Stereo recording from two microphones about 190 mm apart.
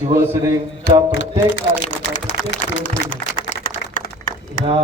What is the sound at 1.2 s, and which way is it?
Speech, 70° left (ahead or behind).